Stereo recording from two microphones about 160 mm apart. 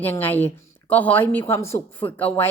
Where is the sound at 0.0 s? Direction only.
10° left (ahead or behind).